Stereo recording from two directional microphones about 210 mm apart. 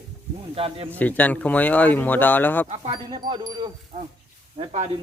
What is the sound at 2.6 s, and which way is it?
Speech, 25° right (ahead or behind).